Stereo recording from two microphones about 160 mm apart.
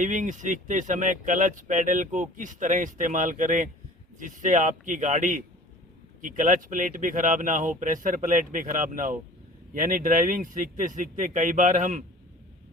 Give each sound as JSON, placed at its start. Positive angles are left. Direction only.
{"t": 0.0, "sound": "speech", "side_deg": -50}